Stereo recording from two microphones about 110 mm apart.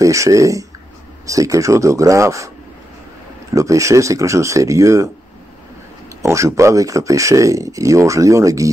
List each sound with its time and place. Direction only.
0.0 s speech: 30° right (ahead or behind)
3.5 s speech: 30° right (ahead or behind)
6.2 s speech: 25° right (ahead or behind)